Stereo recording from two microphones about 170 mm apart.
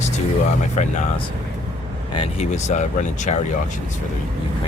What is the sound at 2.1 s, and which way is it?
Speech, 40° left (ahead or behind).